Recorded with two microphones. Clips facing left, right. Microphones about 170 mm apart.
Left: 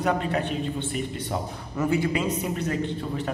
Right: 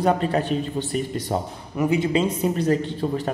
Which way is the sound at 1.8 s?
20° right (ahead or behind).